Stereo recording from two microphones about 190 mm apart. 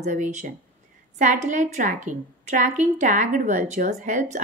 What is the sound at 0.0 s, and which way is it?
A woman's voice, 40° right (ahead or behind).